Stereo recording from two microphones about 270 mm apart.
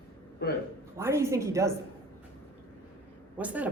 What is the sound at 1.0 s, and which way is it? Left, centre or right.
Speech, centre.